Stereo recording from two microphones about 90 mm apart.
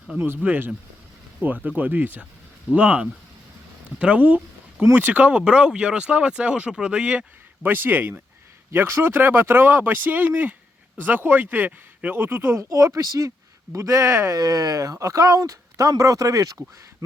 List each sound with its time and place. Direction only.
0.3 s speech: 20° right (ahead or behind)
14.3 s speech: 45° right (ahead or behind)